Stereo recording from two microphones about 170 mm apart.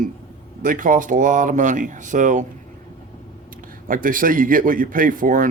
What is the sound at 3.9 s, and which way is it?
Speech, 55° right (ahead or behind).